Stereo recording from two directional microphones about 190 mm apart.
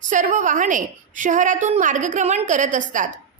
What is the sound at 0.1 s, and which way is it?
A woman's voice, 40° right (ahead or behind).